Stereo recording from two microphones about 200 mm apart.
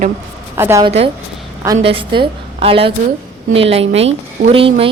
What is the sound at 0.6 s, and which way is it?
Speech, 15° right (ahead or behind).